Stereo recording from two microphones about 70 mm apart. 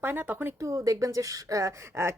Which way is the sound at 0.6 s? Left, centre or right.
Right.